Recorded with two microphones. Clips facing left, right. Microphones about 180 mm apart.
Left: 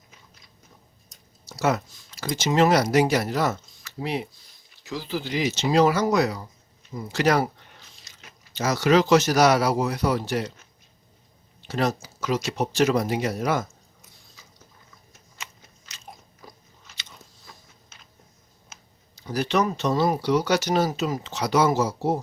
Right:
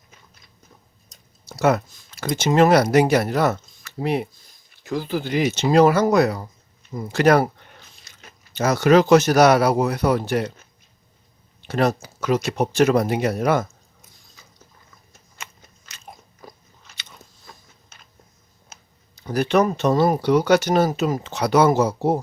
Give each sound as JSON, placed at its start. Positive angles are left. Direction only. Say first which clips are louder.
{"t": 1.5, "sound": "speech", "louder": "right 5 dB", "side_deg": -60}
{"t": 11.6, "sound": "speech", "louder": "right 5 dB", "side_deg": -60}
{"t": 14.4, "sound": "mechanisms", "louder": "right 2 dB", "side_deg": -50}
{"t": 15.4, "sound": "biting", "louder": "right 2 dB", "side_deg": -55}
{"t": 18.7, "sound": "speech", "louder": "right 2 dB", "side_deg": -55}